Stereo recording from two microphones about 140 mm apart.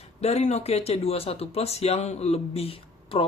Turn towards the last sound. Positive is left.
turn(degrees=45)  # may be behind; listen again after turning